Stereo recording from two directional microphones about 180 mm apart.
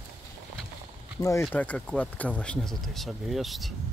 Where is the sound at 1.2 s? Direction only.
15° left (ahead or behind); by 3.7 s centre (ahead or behind).